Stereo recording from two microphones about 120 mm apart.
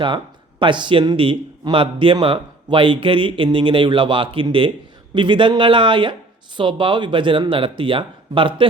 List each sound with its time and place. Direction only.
0.6 s speech: 40° right (ahead or behind)